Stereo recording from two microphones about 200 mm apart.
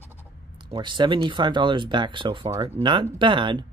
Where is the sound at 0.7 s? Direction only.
25° right (ahead or behind).